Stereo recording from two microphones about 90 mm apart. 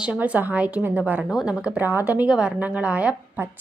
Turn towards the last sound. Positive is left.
turn(degrees=-15)  # may be behind; listen again after turning